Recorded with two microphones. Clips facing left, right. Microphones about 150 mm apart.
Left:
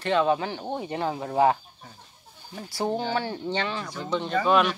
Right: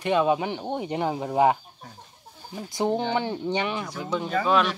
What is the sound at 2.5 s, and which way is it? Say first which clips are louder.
Speech: right 3 dB; 20° right (ahead or behind).